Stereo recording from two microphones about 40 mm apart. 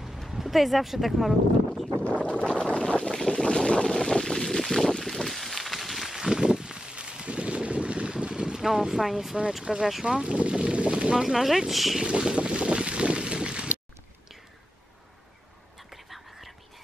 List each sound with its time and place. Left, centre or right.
0.3 s speech: centre
2.5 s boat: left; by 8.6 s centre
8.6 s speech: centre
10.0 s speech: right
11.1 s speech: centre
12.0 s a sound: right
15.9 s whispering: centre